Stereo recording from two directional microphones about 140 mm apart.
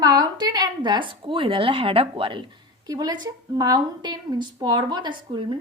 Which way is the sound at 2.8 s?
25° right (ahead or behind).